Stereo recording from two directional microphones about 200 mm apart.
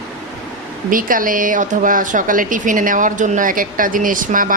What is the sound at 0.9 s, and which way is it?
Speech, 45° right (ahead or behind).